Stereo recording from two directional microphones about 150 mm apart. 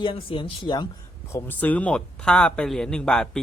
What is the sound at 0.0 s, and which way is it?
Speech, 35° left (ahead or behind).